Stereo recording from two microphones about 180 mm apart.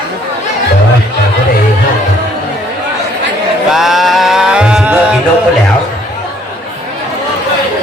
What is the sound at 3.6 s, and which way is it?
Music, centre (ahead or behind).